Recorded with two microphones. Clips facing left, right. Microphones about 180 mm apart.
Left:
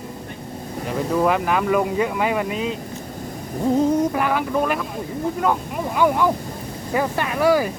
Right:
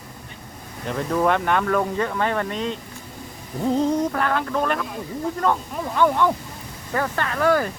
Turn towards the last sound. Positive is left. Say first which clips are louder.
# left 2 dB
turn(degrees=10)  # may be behind; listen again after turning